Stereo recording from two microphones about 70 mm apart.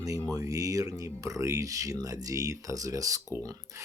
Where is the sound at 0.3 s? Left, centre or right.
Right.